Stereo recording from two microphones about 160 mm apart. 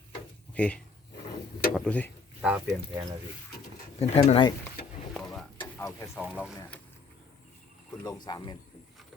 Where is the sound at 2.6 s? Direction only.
25° right (ahead or behind).